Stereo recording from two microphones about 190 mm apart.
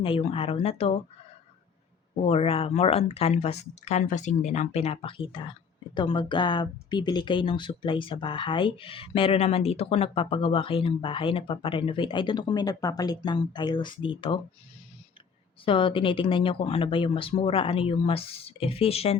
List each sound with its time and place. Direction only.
0.0 s speech: 30° left (ahead or behind)
2.2 s speech: 30° left (ahead or behind)
15.6 s speech: 30° left (ahead or behind)